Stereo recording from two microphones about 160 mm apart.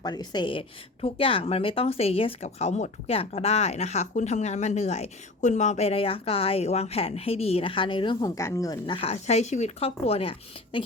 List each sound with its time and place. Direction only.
0.0 s a woman's voice: 25° left (ahead or behind)
8.4 s a woman's voice: 20° left (ahead or behind)
9.0 s speech: 40° left (ahead or behind)